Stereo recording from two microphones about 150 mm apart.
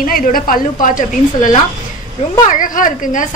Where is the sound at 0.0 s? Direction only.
70° left (ahead or behind).